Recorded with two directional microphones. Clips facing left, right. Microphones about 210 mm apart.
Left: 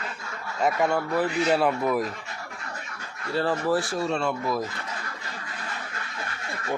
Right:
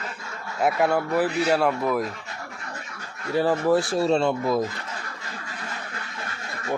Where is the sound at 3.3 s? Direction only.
15° right (ahead or behind).